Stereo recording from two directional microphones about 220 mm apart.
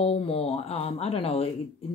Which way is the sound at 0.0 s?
25° left (ahead or behind).